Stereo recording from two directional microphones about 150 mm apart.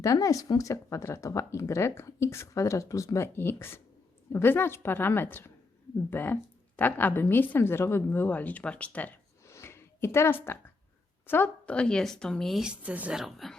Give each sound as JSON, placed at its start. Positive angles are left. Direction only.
{"t": 0.0, "sound": "a woman's voice", "side_deg": 20}